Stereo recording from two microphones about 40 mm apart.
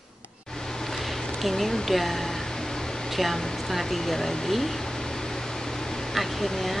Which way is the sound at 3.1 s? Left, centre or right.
Centre.